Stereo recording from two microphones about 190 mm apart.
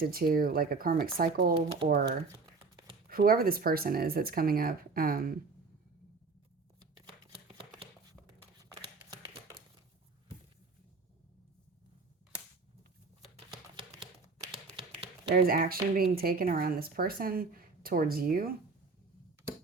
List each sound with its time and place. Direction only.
0.0 s speech: 50° right (ahead or behind)
6.7 s shuffling cards: 25° right (ahead or behind)
15.3 s speech: 50° right (ahead or behind)